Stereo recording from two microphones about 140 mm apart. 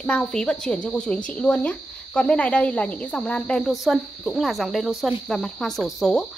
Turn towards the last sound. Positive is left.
turn(degrees=0)  # may be behind; listen again after turning